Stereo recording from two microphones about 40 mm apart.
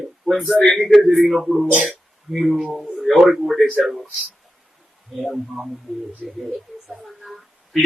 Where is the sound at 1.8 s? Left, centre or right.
Centre.